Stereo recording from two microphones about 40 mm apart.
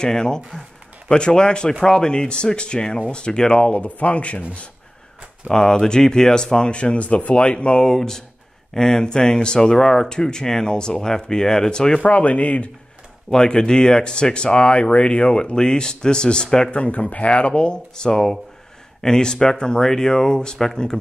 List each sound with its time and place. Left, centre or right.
0.0 s speech: centre; by 4.6 s left
5.5 s speech: centre
12.0 s speech: left
13.3 s speech: centre
16.7 s speech: left